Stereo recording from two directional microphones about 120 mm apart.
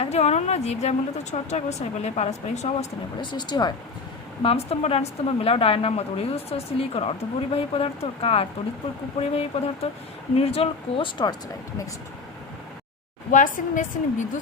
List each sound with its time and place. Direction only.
0.0 s a woman's voice: 65° left (ahead or behind)
3.2 s speech: 35° left (ahead or behind)
4.4 s a woman's voice: 60° left (ahead or behind); by 11.3 s 40° left (ahead or behind)
13.3 s a woman's voice: 90° left